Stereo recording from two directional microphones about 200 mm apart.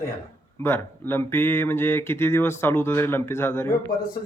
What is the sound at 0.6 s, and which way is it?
Speech, 10° left (ahead or behind).